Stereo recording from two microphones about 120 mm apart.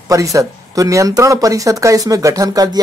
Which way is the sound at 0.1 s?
30° right (ahead or behind).